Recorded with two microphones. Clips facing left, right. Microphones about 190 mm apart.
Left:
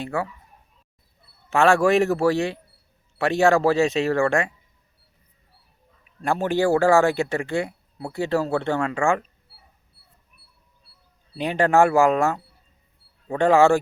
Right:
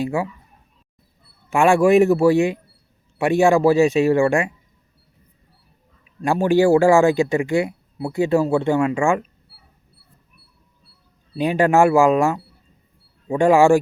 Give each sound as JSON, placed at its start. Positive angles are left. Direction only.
{"t": 1.5, "sound": "speech", "side_deg": -10}
{"t": 6.2, "sound": "speech", "side_deg": -15}
{"t": 11.3, "sound": "speech", "side_deg": -15}